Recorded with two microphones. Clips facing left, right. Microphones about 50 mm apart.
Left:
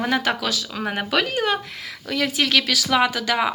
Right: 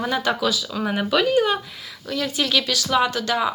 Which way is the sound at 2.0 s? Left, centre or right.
Left.